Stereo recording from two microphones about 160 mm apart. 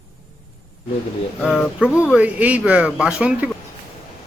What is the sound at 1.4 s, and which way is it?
Speech, centre (ahead or behind).